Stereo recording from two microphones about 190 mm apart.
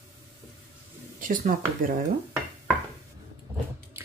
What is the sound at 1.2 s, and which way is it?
Speech, 45° right (ahead or behind).